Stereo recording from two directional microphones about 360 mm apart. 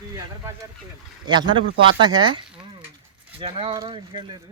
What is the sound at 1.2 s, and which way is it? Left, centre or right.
Speech, centre.